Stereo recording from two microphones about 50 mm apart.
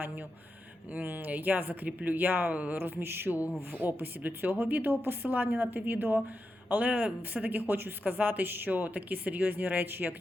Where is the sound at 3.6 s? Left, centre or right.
Right.